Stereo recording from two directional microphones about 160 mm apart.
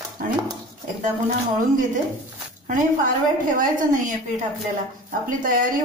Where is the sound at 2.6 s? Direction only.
55° right (ahead or behind).